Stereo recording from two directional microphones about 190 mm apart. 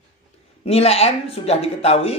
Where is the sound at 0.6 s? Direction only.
35° left (ahead or behind).